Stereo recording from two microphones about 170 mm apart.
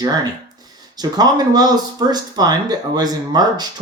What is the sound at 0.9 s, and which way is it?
Speech, 25° right (ahead or behind).